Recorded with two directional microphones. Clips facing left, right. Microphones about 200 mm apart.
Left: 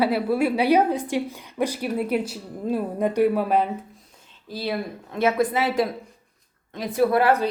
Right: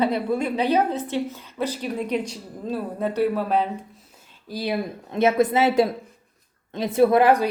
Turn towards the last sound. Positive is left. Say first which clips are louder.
# right 3 dB
turn(degrees=-15)  # may be behind; listen again after turning